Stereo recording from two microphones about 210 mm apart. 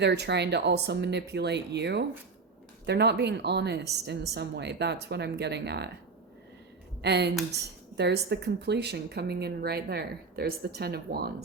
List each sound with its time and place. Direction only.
0.0 s a woman's voice: 55° right (ahead or behind)
7.0 s a woman's voice: 50° right (ahead or behind)